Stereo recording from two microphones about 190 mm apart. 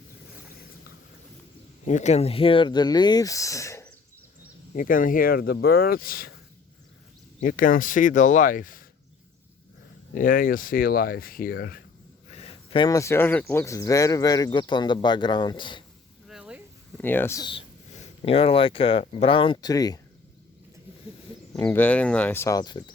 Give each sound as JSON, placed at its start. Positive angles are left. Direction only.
{"t": 1.8, "sound": "speech", "side_deg": 40}
{"t": 4.7, "sound": "speech", "side_deg": 45}
{"t": 7.4, "sound": "speech", "side_deg": 45}
{"t": 10.2, "sound": "speech", "side_deg": 45}
{"t": 12.3, "sound": "speech", "side_deg": 30}
{"t": 16.3, "sound": "a sound", "side_deg": -5}
{"t": 17.0, "sound": "speech", "side_deg": 10}
{"t": 17.9, "sound": "speech", "side_deg": 30}
{"t": 21.5, "sound": "speech", "side_deg": 10}